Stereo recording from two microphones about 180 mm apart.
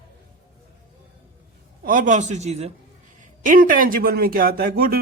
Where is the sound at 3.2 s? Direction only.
50° right (ahead or behind).